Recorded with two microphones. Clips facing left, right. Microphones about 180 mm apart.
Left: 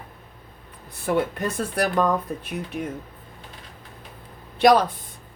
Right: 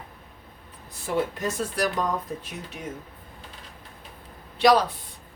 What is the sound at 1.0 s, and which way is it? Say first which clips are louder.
Speech: left 3 dB; 60° left (ahead or behind).